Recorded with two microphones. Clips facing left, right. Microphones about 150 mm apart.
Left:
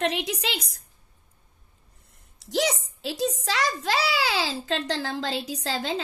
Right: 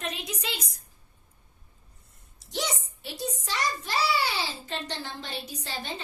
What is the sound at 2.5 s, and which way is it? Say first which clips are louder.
A child's voice: left 7 dB; 90° left.